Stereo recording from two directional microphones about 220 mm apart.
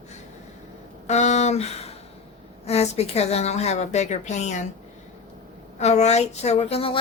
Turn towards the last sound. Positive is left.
turn(degrees=25)  # may be behind; listen again after turning